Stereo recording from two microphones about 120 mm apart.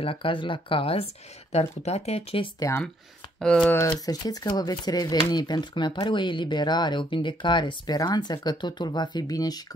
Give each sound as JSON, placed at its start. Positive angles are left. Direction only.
{"t": 0.0, "sound": "speech", "side_deg": 45}
{"t": 1.5, "sound": "speech", "side_deg": 65}
{"t": 3.3, "sound": "speech", "side_deg": 10}
{"t": 3.7, "sound": "speech", "side_deg": 30}